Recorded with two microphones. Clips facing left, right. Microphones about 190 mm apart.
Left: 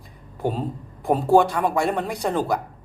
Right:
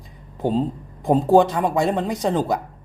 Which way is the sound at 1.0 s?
20° right (ahead or behind).